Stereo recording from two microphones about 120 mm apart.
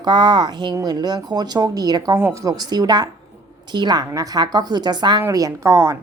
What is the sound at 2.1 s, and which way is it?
A woman's voice, 20° right (ahead or behind).